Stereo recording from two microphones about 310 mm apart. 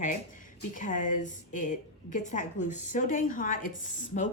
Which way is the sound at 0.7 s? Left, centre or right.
Left.